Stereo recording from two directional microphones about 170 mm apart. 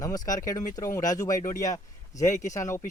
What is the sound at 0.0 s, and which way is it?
A man's voice, 20° left (ahead or behind).